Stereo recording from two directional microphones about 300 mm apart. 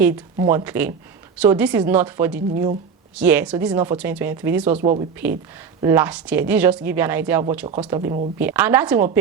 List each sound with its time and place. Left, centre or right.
0.2 s speech: centre
4.8 s speech: right
5.1 s speech: centre